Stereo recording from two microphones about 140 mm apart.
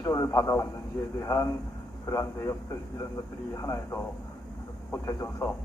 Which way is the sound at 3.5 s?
25° left (ahead or behind).